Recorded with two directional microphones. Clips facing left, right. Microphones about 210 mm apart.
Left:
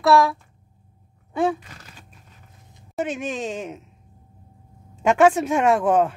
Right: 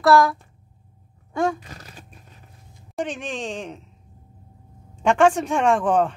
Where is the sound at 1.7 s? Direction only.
40° right (ahead or behind).